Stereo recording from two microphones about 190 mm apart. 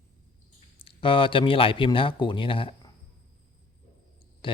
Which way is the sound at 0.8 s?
30° left (ahead or behind).